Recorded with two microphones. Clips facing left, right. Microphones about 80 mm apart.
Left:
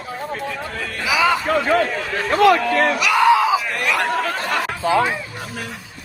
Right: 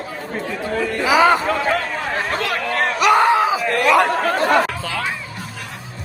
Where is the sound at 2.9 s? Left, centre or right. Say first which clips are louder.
Right 3 dB; right.